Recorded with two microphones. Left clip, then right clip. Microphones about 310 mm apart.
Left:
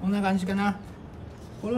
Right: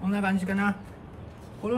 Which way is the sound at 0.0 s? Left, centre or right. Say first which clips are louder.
Left 1 dB; centre.